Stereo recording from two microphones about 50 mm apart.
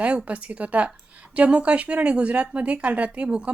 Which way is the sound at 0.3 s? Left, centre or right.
Right.